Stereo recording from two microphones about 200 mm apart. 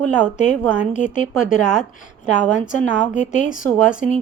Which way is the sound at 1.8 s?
40° left (ahead or behind).